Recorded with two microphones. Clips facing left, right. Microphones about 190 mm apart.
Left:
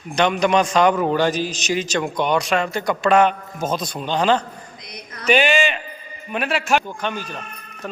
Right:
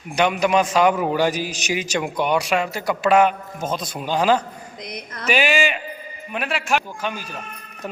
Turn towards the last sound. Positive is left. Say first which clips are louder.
# left 2 dB
turn(degrees=-10)  # may be behind; listen again after turning